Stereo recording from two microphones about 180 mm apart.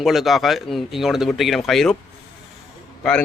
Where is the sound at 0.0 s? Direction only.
Centre (ahead or behind).